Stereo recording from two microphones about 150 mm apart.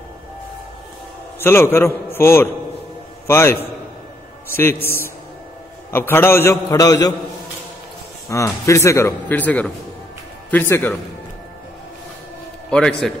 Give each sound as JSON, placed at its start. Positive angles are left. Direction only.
{"t": 1.4, "sound": "a man's voice", "side_deg": 15}
{"t": 8.3, "sound": "a man's voice", "side_deg": 20}
{"t": 12.6, "sound": "a man's voice", "side_deg": 5}